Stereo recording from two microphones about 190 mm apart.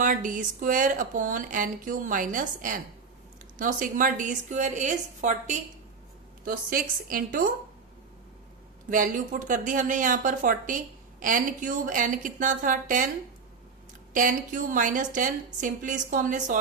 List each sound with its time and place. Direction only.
0.0 s a woman's voice: 45° right (ahead or behind)
8.9 s speech: 45° right (ahead or behind)
14.1 s speech: 45° right (ahead or behind)